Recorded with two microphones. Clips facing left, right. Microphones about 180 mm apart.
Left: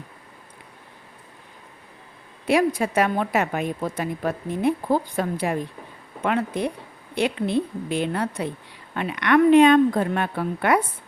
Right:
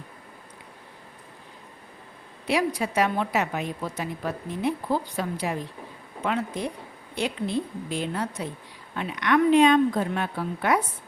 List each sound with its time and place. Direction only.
2.5 s a woman's voice: 50° left (ahead or behind)